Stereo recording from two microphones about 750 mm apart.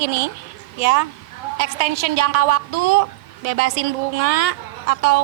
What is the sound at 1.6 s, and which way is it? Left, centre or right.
A woman's voice, right.